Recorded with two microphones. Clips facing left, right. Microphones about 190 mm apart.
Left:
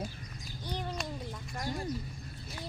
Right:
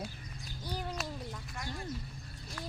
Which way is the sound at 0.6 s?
5° right (ahead or behind).